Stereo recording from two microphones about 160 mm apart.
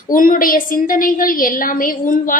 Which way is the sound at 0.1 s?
55° left (ahead or behind).